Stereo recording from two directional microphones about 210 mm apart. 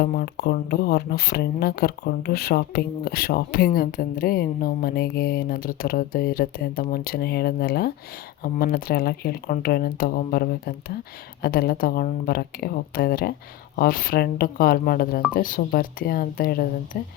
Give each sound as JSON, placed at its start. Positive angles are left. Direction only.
{"t": 0.0, "sound": "speech", "side_deg": 45}